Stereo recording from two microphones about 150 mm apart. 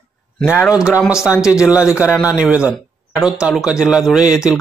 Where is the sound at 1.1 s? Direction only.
5° right (ahead or behind).